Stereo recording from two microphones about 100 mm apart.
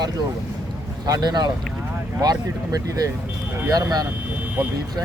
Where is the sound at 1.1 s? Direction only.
45° right (ahead or behind).